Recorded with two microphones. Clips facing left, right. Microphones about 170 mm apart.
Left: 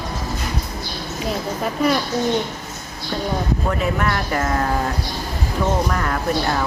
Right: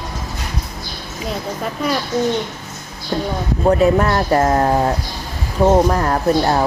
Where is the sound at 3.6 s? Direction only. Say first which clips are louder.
Right 13 dB; 35° right (ahead or behind).